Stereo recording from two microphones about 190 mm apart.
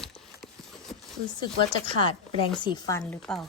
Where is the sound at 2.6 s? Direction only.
25° left (ahead or behind).